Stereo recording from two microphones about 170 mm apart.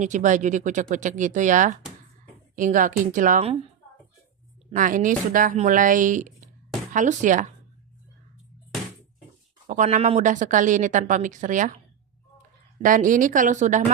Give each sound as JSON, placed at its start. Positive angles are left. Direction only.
{"t": 0.0, "sound": "speech", "side_deg": -45}
{"t": 3.4, "sound": "a woman's voice", "side_deg": -35}
{"t": 4.7, "sound": "speech", "side_deg": -50}
{"t": 9.6, "sound": "speech", "side_deg": -45}
{"t": 12.8, "sound": "speech", "side_deg": -50}